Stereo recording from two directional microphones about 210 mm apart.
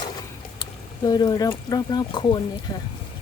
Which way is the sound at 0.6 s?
20° left (ahead or behind).